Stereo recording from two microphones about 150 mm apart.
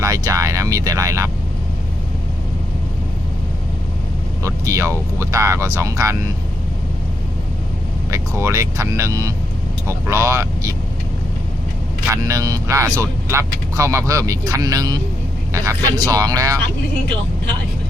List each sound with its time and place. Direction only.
0.0 s speech: 25° right (ahead or behind)
4.4 s speech: 20° right (ahead or behind)
8.1 s speech: 20° right (ahead or behind)
12.1 s speech: 20° right (ahead or behind)